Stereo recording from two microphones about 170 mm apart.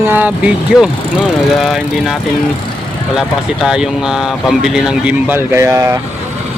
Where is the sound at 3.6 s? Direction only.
5° right (ahead or behind).